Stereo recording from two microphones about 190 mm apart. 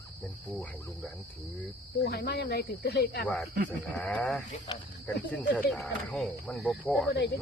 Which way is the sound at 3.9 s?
5° left (ahead or behind).